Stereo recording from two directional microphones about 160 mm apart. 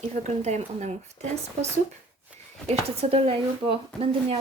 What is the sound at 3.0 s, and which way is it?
Speech, 40° right (ahead or behind).